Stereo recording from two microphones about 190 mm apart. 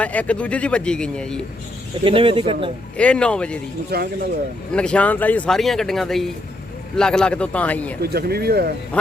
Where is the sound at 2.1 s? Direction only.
25° right (ahead or behind).